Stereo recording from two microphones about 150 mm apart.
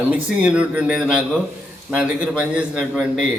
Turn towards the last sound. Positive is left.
turn(degrees=-5)  # may be behind; listen again after turning